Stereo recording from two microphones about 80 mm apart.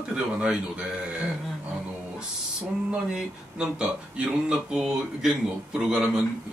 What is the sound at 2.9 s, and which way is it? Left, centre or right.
Speech, centre.